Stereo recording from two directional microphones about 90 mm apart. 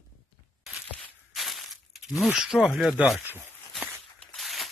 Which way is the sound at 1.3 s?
Centre (ahead or behind).